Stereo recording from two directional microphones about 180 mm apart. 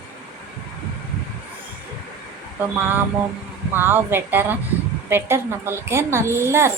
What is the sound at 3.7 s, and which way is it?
Speech, 10° right (ahead or behind).